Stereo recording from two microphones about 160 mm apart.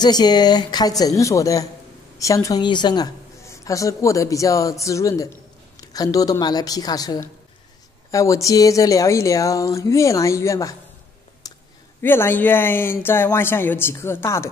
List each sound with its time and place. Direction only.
0.0 s a woman's voice: 25° left (ahead or behind)
11.4 s a sound: 25° left (ahead or behind)
12.0 s speech: 15° left (ahead or behind)